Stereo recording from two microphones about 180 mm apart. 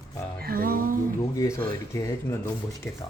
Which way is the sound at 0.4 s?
55° right (ahead or behind).